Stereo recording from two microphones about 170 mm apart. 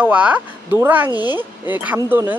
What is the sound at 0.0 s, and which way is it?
Speech, 10° right (ahead or behind).